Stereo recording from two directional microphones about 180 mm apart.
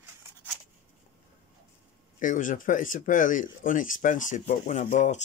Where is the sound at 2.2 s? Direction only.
45° left (ahead or behind).